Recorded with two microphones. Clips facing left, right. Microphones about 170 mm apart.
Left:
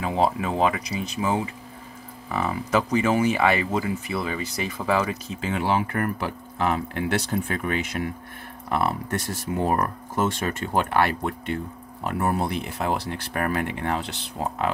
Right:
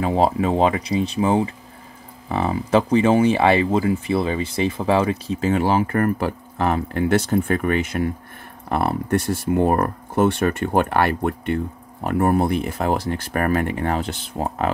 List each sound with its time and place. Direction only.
0.0 s speech: 35° right (ahead or behind); by 8.9 s 50° right (ahead or behind)
10.1 s speech: 60° right (ahead or behind)